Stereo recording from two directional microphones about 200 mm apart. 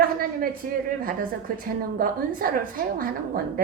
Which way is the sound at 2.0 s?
45° right (ahead or behind).